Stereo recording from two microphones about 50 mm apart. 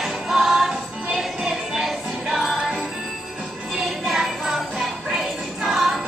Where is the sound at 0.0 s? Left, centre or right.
Centre.